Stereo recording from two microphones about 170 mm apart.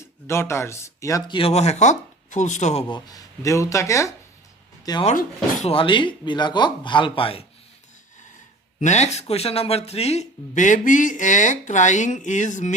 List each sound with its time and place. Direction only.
0.0 s speech: 15° left (ahead or behind)
1.4 s speech: 35° left (ahead or behind)
2.9 s speech: 20° left (ahead or behind)
8.8 s speech: 45° left (ahead or behind)